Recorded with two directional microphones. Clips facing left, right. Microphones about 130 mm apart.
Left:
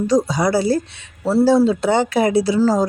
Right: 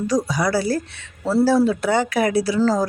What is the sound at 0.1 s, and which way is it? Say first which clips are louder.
Speech: left 3 dB; 25° left (ahead or behind).